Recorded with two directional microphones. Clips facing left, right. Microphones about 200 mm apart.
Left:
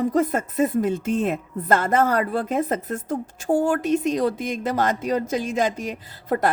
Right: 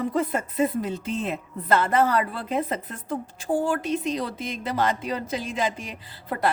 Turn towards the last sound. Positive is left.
turn(degrees=45)  # may be behind; listen again after turning